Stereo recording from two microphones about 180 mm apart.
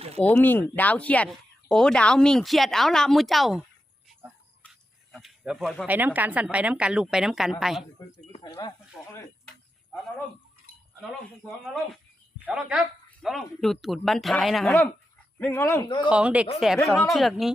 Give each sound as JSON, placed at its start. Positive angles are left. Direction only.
{"t": 0.3, "sound": "speech", "side_deg": 10}
{"t": 4.7, "sound": "speech", "side_deg": 0}
{"t": 8.4, "sound": "speech", "side_deg": 25}
{"t": 12.5, "sound": "speech", "side_deg": -5}
{"t": 16.0, "sound": "speech", "side_deg": -5}